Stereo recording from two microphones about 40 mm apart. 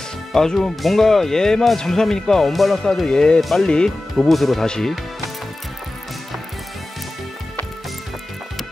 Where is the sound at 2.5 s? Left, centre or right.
Centre.